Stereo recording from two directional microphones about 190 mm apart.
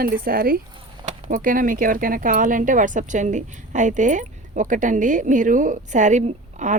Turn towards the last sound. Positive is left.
turn(degrees=-40)  # may be behind; listen again after turning